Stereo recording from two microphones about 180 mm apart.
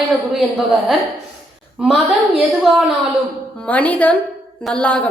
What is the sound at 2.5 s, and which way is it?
A woman's voice, centre (ahead or behind).